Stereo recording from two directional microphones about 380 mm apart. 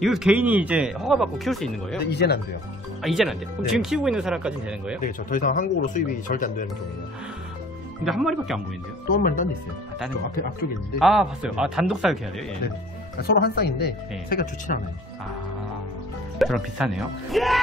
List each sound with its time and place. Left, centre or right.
0.0 s speech: centre
2.0 s speech: left
3.0 s speech: centre
5.0 s speech: left
8.0 s speech: centre
9.0 s speech: left
11.0 s speech: centre
13.2 s speech: left
16.3 s speech: centre